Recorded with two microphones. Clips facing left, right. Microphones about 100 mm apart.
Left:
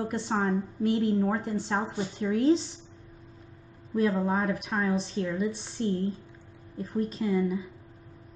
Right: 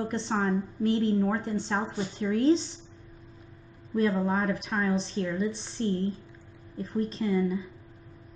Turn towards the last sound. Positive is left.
turn(degrees=5)  # may be behind; listen again after turning